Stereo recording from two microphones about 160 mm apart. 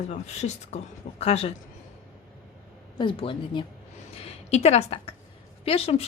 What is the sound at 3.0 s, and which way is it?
A woman's voice, 30° left (ahead or behind).